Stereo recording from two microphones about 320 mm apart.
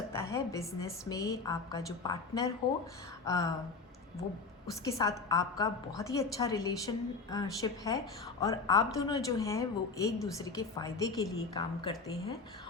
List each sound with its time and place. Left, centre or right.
0.1 s a woman's voice: centre